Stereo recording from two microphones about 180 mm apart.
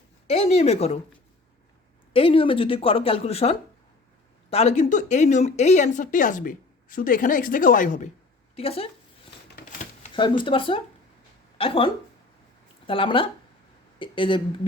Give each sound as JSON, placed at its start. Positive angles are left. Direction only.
{"t": 0.3, "sound": "speech", "side_deg": 35}
{"t": 2.1, "sound": "speech", "side_deg": 30}
{"t": 8.5, "sound": "speech", "side_deg": 35}
{"t": 10.2, "sound": "speech", "side_deg": 25}
{"t": 12.9, "sound": "speech", "side_deg": 30}